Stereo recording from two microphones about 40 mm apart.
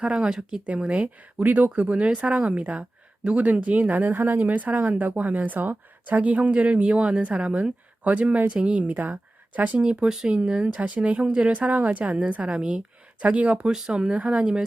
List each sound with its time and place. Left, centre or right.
0.0 s speech: right
0.3 s speech: centre
0.8 s speech: right
1.0 s speech: right
11.3 s speech: right
11.5 s speech: right
13.7 s speech: centre
14.2 s speech: right